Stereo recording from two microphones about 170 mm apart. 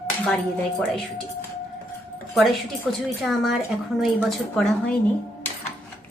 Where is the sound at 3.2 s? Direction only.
Centre (ahead or behind).